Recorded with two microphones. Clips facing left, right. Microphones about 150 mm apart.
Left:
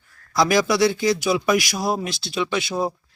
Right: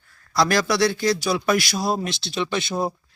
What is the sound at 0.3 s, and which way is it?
Speech, 15° left (ahead or behind).